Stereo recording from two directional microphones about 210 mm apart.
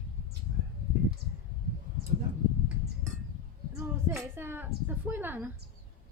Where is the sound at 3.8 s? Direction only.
10° right (ahead or behind).